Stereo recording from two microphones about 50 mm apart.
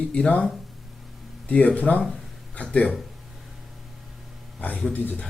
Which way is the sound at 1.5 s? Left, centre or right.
Left.